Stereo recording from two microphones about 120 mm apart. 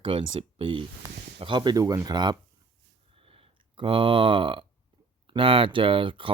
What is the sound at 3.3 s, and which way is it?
Speech, 50° right (ahead or behind).